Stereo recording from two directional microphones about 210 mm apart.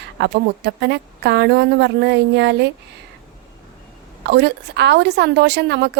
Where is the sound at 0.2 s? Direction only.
55° right (ahead or behind).